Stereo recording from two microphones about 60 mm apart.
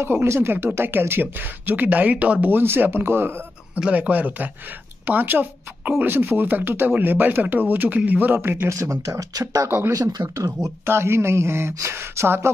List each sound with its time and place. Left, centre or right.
0.0 s speech: right
2.5 s speech: right
3.9 s speech: right
8.7 s speech: right
10.9 s speech: right